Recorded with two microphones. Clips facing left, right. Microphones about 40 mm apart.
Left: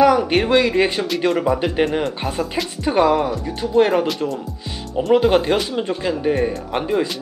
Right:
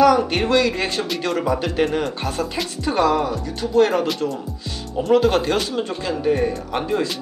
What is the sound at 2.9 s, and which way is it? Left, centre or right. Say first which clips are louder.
Speech: left 2 dB; centre.